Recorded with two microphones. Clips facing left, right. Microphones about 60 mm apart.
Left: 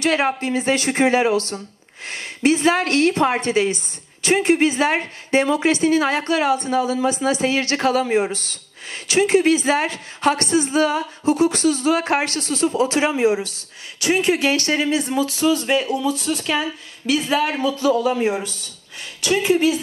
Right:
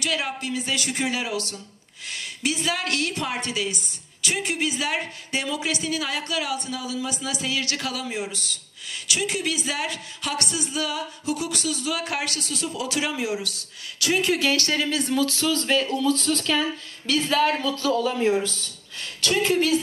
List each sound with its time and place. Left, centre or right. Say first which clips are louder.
0.0 s a woman's voice: left 8 dB; left; by 19.8 s centre